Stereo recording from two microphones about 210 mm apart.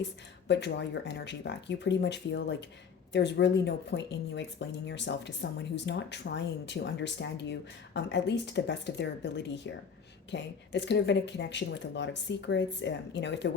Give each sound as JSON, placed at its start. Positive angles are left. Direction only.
{"t": 0.4, "sound": "speech", "side_deg": 55}